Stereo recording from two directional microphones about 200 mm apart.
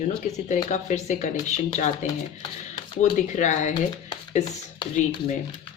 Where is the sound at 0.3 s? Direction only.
35° left (ahead or behind).